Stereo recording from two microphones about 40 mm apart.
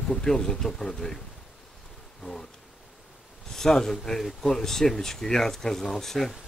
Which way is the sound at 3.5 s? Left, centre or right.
Centre.